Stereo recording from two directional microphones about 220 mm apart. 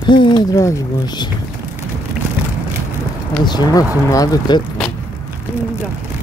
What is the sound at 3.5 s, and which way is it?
Speech, 20° left (ahead or behind).